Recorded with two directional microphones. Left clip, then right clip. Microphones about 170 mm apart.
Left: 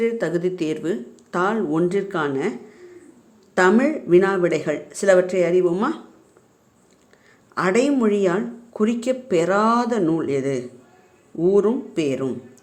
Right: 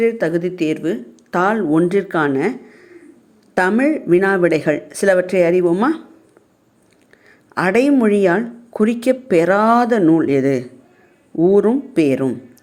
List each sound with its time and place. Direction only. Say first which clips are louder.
0.0 s speech: right 5 dB; 20° right (ahead or behind)
7.5 s speech: right 4 dB; 25° right (ahead or behind)